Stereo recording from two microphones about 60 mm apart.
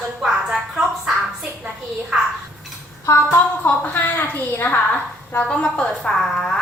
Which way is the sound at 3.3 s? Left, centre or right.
Left.